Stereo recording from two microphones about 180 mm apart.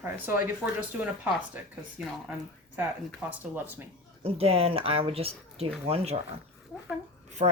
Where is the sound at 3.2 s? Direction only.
10° right (ahead or behind).